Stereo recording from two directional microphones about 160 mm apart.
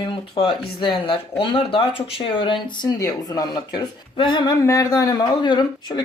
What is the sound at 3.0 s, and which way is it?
Speech, 20° left (ahead or behind).